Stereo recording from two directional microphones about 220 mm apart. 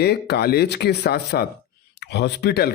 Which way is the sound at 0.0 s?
50° left (ahead or behind).